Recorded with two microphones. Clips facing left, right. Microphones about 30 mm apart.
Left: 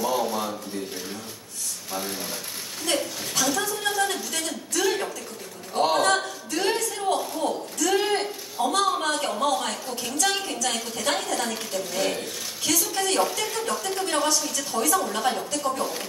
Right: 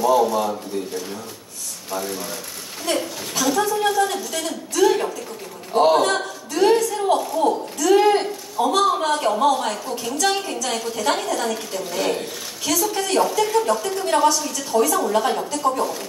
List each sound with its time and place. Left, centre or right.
0.0 s a woman's voice: centre
1.9 s a woman's voice: centre
3.9 s speech: centre
4.4 s a woman's voice: centre
6.0 s a sound: centre
7.8 s a woman's voice: centre
15.5 s a woman's voice: right